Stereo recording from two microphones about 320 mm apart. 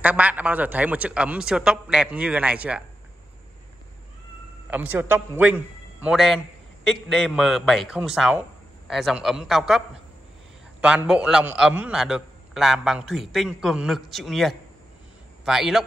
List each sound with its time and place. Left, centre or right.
0.0 s a man's voice: centre
4.6 s a man's voice: centre